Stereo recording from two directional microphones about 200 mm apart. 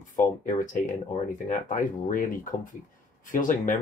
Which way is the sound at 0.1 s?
40° left (ahead or behind).